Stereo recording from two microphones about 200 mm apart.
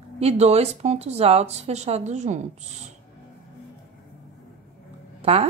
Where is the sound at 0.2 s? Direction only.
35° right (ahead or behind).